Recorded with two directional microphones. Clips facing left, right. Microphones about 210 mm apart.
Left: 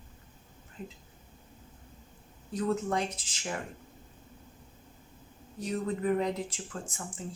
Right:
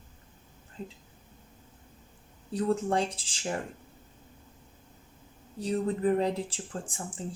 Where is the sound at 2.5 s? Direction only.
35° right (ahead or behind).